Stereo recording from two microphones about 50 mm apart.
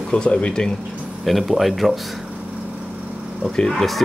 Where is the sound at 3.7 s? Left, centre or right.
Centre.